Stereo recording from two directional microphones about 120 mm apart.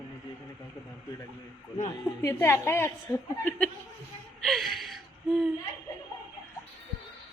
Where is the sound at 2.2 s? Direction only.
25° left (ahead or behind).